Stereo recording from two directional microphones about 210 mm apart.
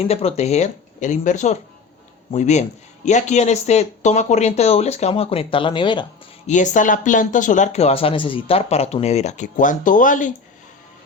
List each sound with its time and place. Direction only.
0.0 s speech: 30° left (ahead or behind)
6.5 s speech: 35° left (ahead or behind)